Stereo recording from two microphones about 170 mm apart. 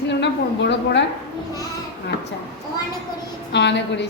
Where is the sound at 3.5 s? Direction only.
90° left.